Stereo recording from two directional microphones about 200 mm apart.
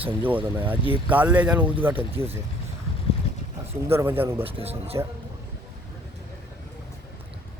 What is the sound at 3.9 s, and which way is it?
Speech, 10° right (ahead or behind).